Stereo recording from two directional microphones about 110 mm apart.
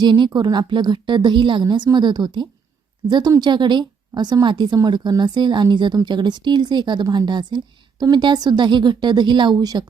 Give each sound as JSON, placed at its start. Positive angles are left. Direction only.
{"t": 0.0, "sound": "a woman's voice", "side_deg": -40}